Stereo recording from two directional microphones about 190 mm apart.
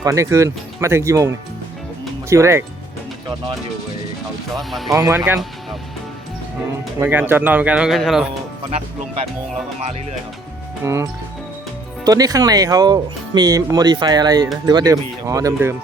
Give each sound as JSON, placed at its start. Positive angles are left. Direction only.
{"t": 0.0, "sound": "speech", "side_deg": -15}
{"t": 2.3, "sound": "speech", "side_deg": -15}
{"t": 4.5, "sound": "speech", "side_deg": 0}
{"t": 4.9, "sound": "speech", "side_deg": -15}
{"t": 7.0, "sound": "speech", "side_deg": -10}
{"t": 10.8, "sound": "speech", "side_deg": -15}